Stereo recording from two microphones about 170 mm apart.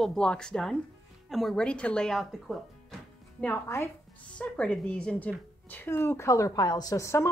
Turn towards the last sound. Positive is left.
turn(degrees=15)  # may be behind; listen again after turning